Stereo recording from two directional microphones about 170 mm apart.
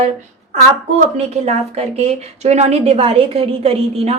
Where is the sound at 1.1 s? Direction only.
40° right (ahead or behind).